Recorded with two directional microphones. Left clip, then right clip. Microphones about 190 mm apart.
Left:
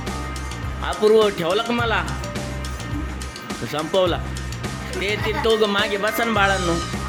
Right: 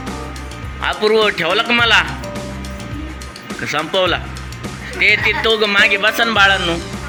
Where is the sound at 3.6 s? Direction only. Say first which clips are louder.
Right 4 dB; 15° left (ahead or behind).